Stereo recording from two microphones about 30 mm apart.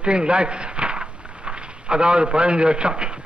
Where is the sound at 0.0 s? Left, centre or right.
Right.